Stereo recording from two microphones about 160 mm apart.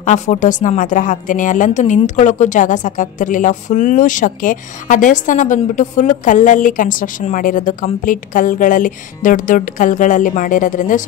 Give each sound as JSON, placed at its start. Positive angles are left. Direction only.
{"t": 0.0, "sound": "speech", "side_deg": 45}